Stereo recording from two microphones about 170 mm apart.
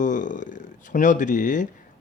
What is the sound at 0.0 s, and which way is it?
Speech, 50° left (ahead or behind).